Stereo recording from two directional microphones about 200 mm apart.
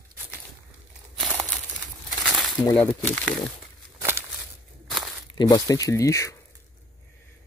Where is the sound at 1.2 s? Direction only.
Centre (ahead or behind).